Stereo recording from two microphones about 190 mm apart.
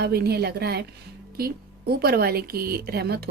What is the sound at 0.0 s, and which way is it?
Speech, 55° right (ahead or behind).